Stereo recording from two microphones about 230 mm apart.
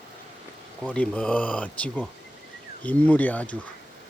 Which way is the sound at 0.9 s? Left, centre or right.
Centre.